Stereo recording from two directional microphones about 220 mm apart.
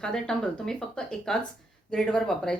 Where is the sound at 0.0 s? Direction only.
5° left (ahead or behind).